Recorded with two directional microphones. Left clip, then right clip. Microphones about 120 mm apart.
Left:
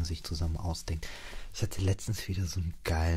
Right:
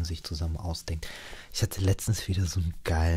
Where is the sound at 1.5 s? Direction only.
30° right (ahead or behind).